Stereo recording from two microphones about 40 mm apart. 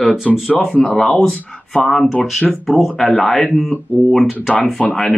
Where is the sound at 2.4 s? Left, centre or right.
Centre.